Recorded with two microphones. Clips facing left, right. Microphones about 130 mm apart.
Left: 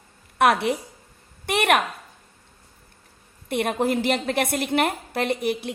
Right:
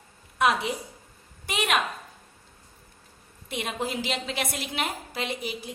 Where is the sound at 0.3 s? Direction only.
65° left (ahead or behind).